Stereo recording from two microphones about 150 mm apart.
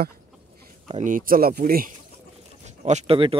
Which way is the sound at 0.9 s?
55° right (ahead or behind).